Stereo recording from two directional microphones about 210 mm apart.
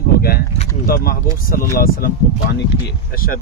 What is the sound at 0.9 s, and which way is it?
Speech, 45° left (ahead or behind).